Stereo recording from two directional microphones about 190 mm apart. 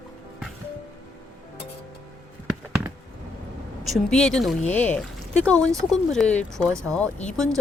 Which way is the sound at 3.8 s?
Centre (ahead or behind).